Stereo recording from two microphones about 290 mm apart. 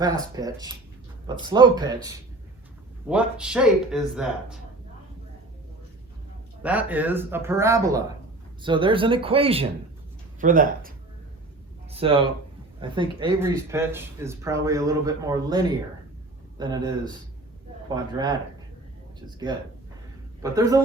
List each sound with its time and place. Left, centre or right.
0.0 s speech: centre
6.6 s speech: centre
20.4 s speech: centre